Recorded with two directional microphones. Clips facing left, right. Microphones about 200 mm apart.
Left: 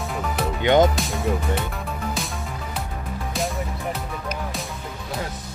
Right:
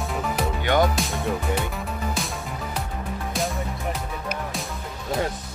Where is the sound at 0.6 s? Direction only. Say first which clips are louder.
Left 5 dB; 20° left (ahead or behind).